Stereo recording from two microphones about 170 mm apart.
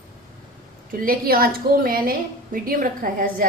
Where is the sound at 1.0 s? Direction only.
60° right (ahead or behind).